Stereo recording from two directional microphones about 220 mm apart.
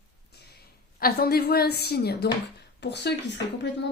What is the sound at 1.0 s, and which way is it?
Speech, 45° left (ahead or behind).